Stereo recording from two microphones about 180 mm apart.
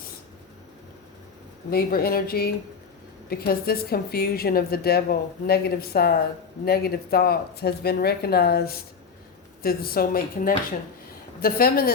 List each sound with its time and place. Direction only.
1.7 s a woman's voice: 55° left (ahead or behind)